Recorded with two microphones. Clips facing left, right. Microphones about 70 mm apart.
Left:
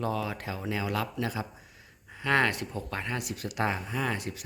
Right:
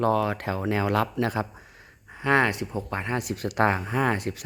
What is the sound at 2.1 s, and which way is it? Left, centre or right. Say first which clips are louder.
Speech: right 4 dB; right.